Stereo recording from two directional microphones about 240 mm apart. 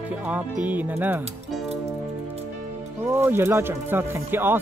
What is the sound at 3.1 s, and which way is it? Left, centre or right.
Speech, centre.